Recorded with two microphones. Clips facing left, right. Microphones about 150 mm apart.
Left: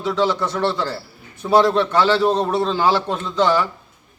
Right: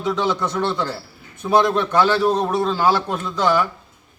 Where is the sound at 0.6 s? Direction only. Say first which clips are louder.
Left 3 dB; centre (ahead or behind).